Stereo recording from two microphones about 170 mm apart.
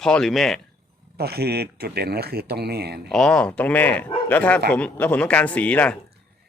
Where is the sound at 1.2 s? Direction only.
70° right (ahead or behind).